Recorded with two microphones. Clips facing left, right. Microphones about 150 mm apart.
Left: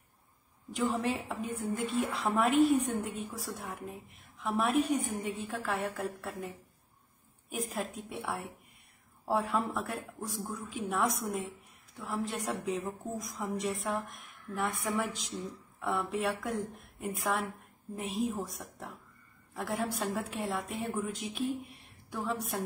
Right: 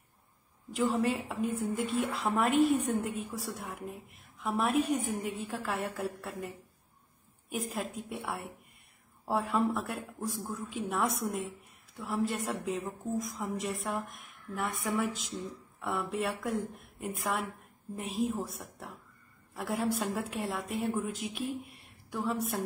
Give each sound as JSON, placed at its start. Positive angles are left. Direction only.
{"t": 0.7, "sound": "a woman's voice", "side_deg": 0}